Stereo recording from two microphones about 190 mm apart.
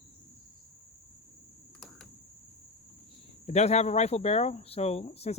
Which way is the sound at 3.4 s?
35° left (ahead or behind).